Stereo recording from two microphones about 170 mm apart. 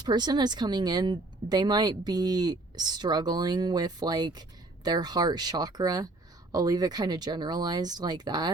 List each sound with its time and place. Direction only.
0.0 s speech: 25° right (ahead or behind)